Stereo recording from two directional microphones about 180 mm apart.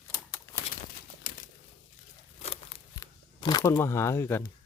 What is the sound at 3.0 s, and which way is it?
Speech, 20° left (ahead or behind).